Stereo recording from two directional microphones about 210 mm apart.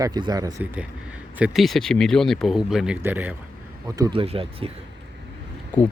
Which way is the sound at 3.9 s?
20° right (ahead or behind).